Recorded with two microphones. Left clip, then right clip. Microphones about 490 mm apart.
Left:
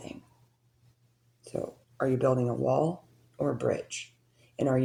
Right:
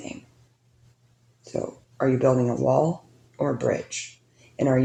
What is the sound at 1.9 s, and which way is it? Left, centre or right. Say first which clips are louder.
Speech: right 6 dB; left.